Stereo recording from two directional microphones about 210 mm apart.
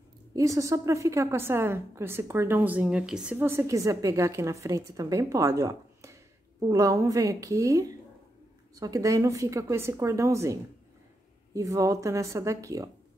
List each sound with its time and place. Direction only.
0.4 s a woman's voice: 15° right (ahead or behind)